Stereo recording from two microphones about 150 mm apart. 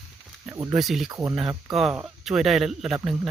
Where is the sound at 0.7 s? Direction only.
Centre (ahead or behind).